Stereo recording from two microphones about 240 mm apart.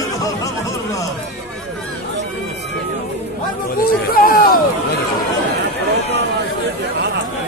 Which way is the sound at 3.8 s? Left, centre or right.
Left.